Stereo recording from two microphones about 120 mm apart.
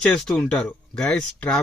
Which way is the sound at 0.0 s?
10° left (ahead or behind).